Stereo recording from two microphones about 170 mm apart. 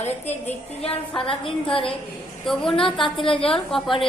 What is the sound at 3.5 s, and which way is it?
Speech, centre (ahead or behind).